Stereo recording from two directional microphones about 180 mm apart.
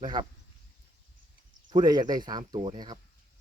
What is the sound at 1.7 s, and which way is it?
Speech, 25° right (ahead or behind).